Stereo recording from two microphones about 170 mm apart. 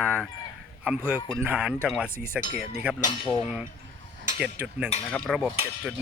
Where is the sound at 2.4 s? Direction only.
50° left (ahead or behind).